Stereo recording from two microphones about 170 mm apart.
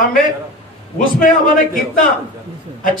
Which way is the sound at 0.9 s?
55° left (ahead or behind).